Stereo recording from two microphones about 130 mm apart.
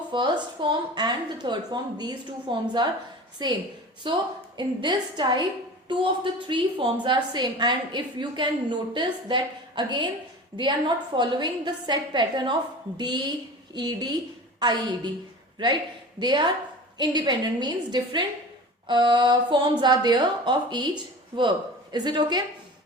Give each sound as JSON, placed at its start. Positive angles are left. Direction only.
{"t": 0.1, "sound": "a woman's voice", "side_deg": -35}
{"t": 6.5, "sound": "a woman's voice", "side_deg": -40}
{"t": 21.9, "sound": "a woman's voice", "side_deg": -35}